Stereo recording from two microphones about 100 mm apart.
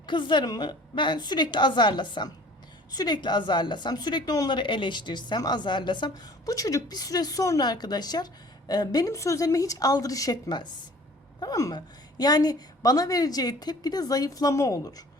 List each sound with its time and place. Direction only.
0.0 s a woman's voice: 50° left (ahead or behind)
6.4 s a woman's voice: 35° left (ahead or behind)